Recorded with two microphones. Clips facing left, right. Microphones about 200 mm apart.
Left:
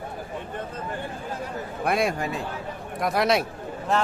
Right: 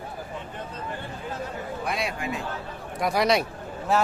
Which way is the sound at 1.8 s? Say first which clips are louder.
Left 7 dB; 50° left (ahead or behind).